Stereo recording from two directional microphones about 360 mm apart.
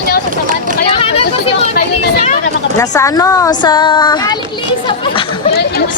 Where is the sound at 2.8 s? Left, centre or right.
Centre.